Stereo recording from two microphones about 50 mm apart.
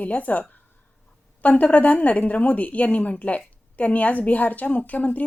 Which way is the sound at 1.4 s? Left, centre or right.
Left.